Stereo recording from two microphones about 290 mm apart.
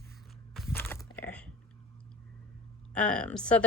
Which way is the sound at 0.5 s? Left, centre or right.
Centre.